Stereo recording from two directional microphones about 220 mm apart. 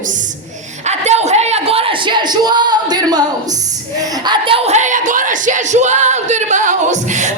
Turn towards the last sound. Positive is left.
turn(degrees=-35)  # may be behind; listen again after turning